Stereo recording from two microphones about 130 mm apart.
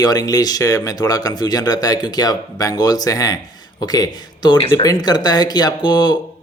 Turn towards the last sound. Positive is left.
turn(degrees=35)  # may be behind; listen again after turning